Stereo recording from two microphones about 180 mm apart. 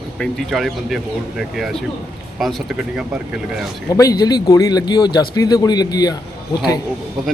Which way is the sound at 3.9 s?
20° left (ahead or behind).